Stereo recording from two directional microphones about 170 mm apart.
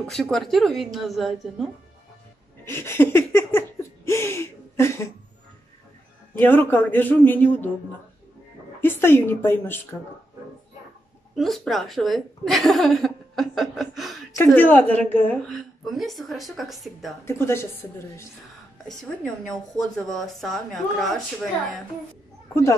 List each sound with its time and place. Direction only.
0.1 s speech: centre (ahead or behind)
2.6 s laughter: 15° left (ahead or behind)
6.4 s a man's voice: 10° left (ahead or behind)
8.8 s a man's voice: 15° left (ahead or behind)
11.3 s speech: centre (ahead or behind)
14.3 s a man's voice: 10° left (ahead or behind)
15.5 s speech: centre (ahead or behind)
17.2 s a man's voice: 15° left (ahead or behind)
18.9 s speech: 5° left (ahead or behind)
22.5 s a man's voice: 15° left (ahead or behind)